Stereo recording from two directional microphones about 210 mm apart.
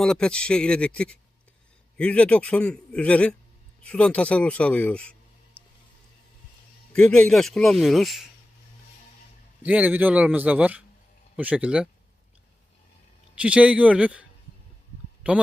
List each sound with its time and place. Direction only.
0.0 s a man's voice: 5° left (ahead or behind)
6.9 s a man's voice: 5° left (ahead or behind)
9.6 s a man's voice: 5° right (ahead or behind)
13.3 s a man's voice: 5° right (ahead or behind)